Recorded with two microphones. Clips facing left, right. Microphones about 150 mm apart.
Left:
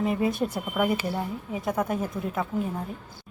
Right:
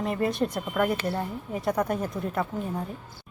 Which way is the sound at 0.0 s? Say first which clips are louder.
Left 1 dB; centre (ahead or behind).